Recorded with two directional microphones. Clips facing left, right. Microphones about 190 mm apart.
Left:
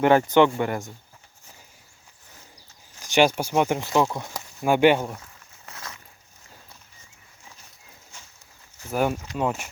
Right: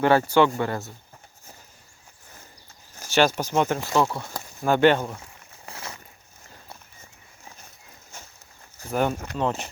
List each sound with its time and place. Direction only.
0.0 s speech: 20° left (ahead or behind)
3.1 s speech: 15° left (ahead or behind)
5.2 s a sound: 30° right (ahead or behind)
8.9 s speech: 5° left (ahead or behind)
9.1 s speech: 55° right (ahead or behind)
9.4 s speech: 10° left (ahead or behind)